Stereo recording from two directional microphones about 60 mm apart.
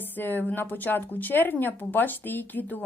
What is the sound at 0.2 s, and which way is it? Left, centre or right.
A woman's voice, left.